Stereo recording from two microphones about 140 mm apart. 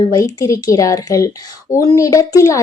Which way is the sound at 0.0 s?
25° left (ahead or behind).